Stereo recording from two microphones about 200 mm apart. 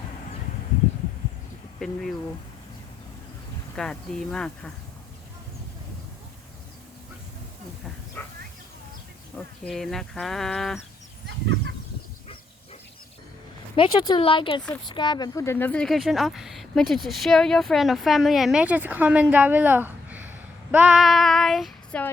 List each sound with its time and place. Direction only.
1.8 s speech: centre (ahead or behind)
3.8 s speech: 5° left (ahead or behind)
8.2 s a sound: 10° left (ahead or behind)
9.6 s speech: centre (ahead or behind)
11.3 s chicken: 60° right (ahead or behind)
13.7 s speech: 25° left (ahead or behind); by 22.0 s centre (ahead or behind)